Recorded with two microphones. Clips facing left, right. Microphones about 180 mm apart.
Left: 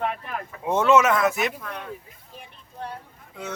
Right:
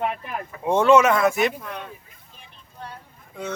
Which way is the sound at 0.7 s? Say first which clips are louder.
Right 3 dB; 5° left (ahead or behind).